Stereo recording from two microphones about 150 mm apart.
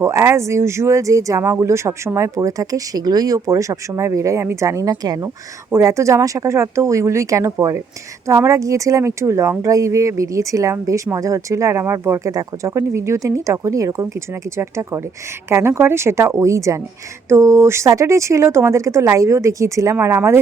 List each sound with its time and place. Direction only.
0.0 s a woman's voice: 20° right (ahead or behind)